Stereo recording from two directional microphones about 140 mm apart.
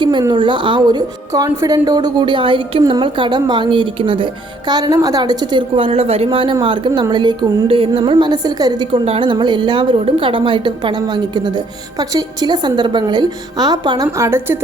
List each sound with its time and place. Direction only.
0.0 s a woman's voice: 35° right (ahead or behind); by 14.6 s 15° right (ahead or behind)